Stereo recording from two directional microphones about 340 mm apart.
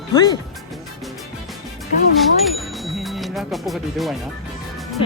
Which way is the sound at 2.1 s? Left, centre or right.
Centre.